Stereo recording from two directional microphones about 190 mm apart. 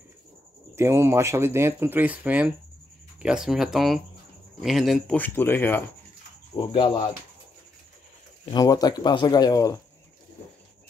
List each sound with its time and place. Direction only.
0.7 s speech: 15° right (ahead or behind); by 5.8 s 10° left (ahead or behind)
6.5 s speech: 25° left (ahead or behind)
8.5 s speech: 20° left (ahead or behind)